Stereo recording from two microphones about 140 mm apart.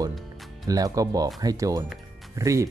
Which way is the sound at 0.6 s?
25° right (ahead or behind).